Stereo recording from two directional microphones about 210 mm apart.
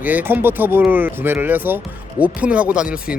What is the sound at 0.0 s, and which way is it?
Speech, 10° right (ahead or behind).